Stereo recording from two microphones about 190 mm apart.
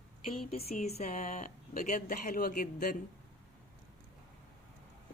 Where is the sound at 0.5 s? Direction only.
35° left (ahead or behind).